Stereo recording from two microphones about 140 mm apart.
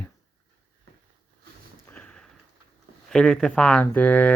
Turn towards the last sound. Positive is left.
turn(degrees=10)  # may be behind; listen again after turning